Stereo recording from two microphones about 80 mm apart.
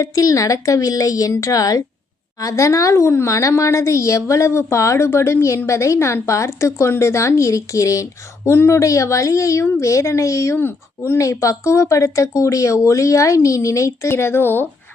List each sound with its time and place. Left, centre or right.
0.0 s a woman's voice: left
11.2 s speech: left